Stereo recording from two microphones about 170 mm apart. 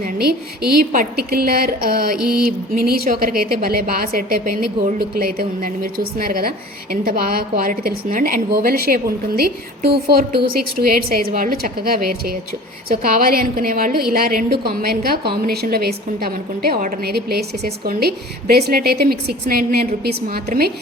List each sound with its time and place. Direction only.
0.0 s a woman's voice: 65° right (ahead or behind)